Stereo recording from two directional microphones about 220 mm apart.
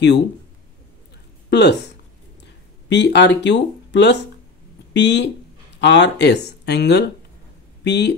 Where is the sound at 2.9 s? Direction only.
50° left (ahead or behind).